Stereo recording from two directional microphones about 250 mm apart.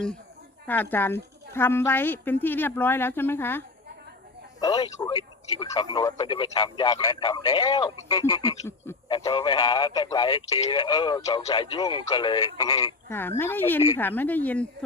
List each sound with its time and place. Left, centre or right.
0.7 s a man's voice: centre
4.6 s a man's voice: centre